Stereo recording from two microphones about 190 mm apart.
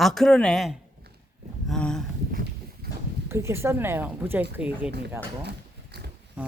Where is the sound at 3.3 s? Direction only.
15° right (ahead or behind).